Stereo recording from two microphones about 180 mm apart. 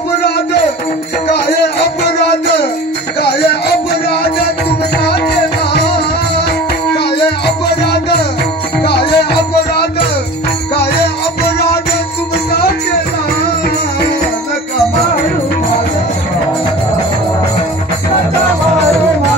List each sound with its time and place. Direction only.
1.3 s music: 65° left (ahead or behind)
7.2 s music: 65° left (ahead or behind)